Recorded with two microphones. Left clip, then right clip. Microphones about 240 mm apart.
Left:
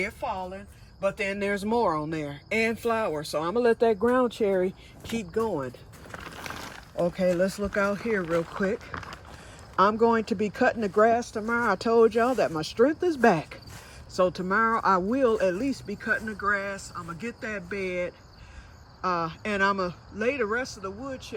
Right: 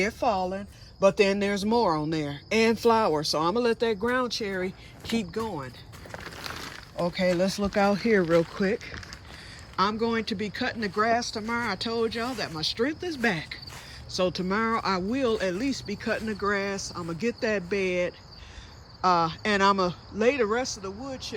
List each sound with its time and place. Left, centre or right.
0.0 s a woman's voice: centre
6.2 s a sound: left
6.5 s speech: centre
14.2 s speech: centre